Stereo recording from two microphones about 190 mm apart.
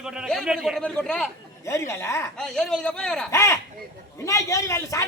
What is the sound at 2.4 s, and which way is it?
Speech, 5° left (ahead or behind).